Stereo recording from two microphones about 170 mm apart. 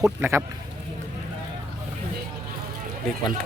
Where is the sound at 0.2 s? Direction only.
15° right (ahead or behind).